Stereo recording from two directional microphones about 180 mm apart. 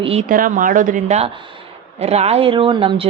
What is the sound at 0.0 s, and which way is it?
Speech, 35° right (ahead or behind).